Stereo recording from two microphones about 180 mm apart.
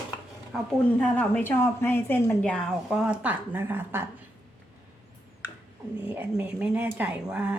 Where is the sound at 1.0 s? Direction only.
5° left (ahead or behind).